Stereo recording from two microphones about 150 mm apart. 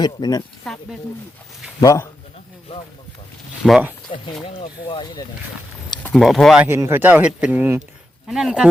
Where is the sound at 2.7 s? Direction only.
40° left (ahead or behind).